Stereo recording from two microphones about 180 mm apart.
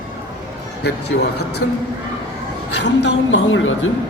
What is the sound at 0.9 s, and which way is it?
Speech, 70° left (ahead or behind).